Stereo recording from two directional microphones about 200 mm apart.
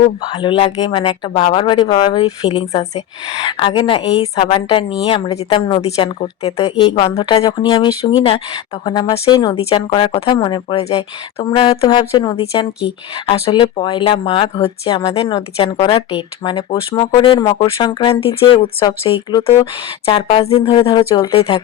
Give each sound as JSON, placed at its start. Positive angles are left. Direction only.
{"t": 0.0, "sound": "speech", "side_deg": 25}